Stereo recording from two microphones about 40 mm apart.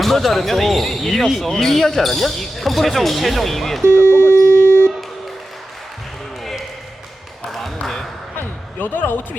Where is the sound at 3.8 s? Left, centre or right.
Right.